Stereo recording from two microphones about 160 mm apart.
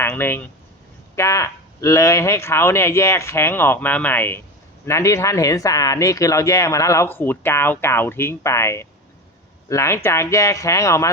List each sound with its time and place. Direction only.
0.0 s speech: 15° left (ahead or behind)